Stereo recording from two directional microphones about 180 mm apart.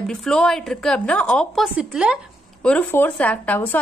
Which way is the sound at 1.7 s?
5° right (ahead or behind).